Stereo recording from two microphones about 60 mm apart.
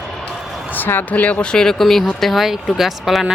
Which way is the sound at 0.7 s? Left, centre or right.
Left.